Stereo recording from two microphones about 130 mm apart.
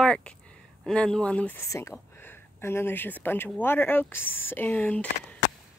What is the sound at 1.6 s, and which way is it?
Speech, 20° left (ahead or behind).